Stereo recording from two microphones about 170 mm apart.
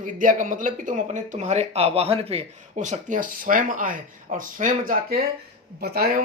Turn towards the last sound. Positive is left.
turn(degrees=-60)  # may be behind; listen again after turning